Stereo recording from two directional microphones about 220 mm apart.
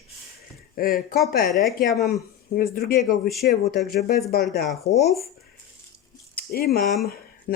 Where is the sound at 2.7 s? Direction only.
45° left (ahead or behind).